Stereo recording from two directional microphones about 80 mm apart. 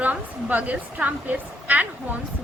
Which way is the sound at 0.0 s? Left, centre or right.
Centre.